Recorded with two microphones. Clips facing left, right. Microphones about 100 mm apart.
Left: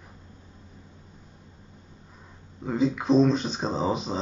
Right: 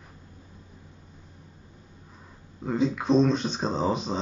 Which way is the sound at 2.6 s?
Centre (ahead or behind).